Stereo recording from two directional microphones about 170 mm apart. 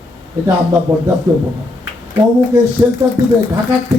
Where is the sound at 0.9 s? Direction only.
10° right (ahead or behind).